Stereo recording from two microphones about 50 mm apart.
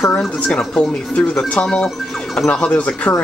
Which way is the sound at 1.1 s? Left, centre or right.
Left.